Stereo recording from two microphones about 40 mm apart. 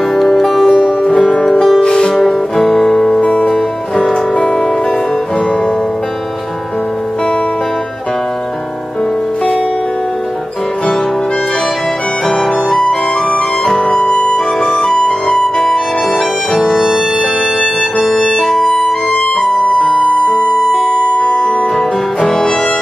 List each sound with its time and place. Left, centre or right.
0.1 s music: centre
1.8 s music: centre
2.2 s music: centre
3.2 s music: left
3.4 s music: centre
4.1 s music: left
13.8 s music: left
16.5 s music: centre
20.0 s music: left
21.1 s music: left
21.7 s music: centre